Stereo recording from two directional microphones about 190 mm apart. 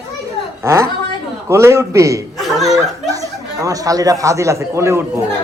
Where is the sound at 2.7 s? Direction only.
20° right (ahead or behind).